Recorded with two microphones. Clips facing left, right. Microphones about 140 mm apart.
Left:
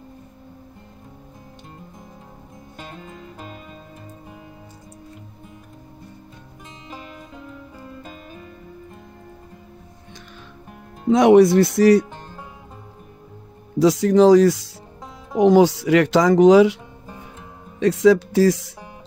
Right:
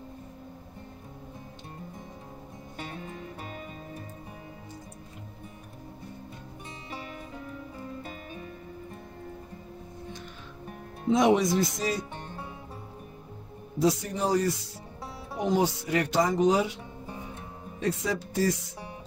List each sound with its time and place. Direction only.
11.1 s speech: 65° left (ahead or behind)
13.7 s speech: 90° left
17.7 s speech: 90° left